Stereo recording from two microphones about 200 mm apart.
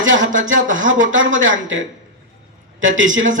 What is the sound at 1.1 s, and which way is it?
Speech, 70° right (ahead or behind).